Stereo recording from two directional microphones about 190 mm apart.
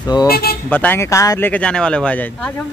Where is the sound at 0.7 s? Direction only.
10° left (ahead or behind).